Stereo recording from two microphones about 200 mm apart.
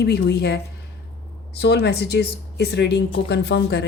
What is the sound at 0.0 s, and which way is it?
Speech, 55° left (ahead or behind).